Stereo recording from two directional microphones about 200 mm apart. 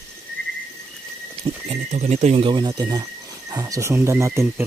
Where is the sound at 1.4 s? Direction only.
30° right (ahead or behind).